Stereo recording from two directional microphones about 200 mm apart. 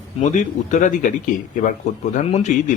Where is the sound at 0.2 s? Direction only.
40° left (ahead or behind).